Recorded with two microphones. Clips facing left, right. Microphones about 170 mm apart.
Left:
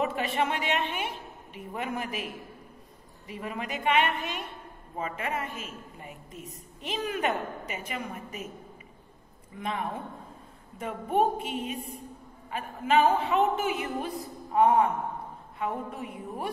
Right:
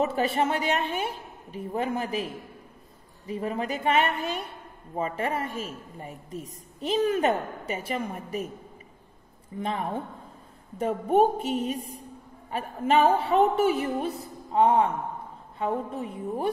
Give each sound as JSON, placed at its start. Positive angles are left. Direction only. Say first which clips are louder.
{"t": 0.0, "sound": "a woman's voice", "louder": "right 3 dB", "side_deg": -35}
{"t": 9.6, "sound": "a woman's voice", "louder": "right 3 dB", "side_deg": -30}